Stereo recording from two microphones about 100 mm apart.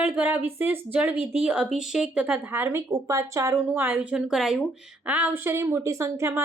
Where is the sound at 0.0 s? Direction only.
20° right (ahead or behind).